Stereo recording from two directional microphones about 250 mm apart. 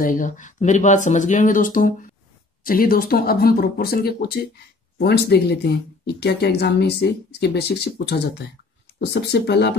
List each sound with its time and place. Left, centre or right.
0.0 s speech: left